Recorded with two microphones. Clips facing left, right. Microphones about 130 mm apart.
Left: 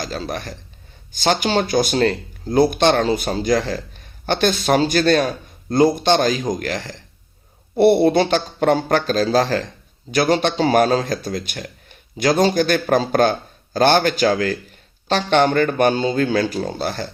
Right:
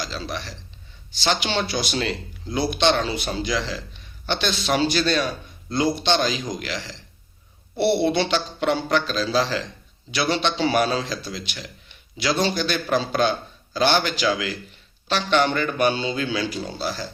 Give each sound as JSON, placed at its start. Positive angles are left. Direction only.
{"t": 0.0, "sound": "speech", "side_deg": 50}